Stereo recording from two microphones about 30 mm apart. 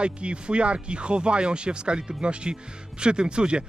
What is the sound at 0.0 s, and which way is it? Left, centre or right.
Speech, right.